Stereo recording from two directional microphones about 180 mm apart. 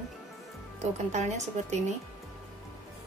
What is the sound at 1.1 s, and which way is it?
Speech, 40° right (ahead or behind).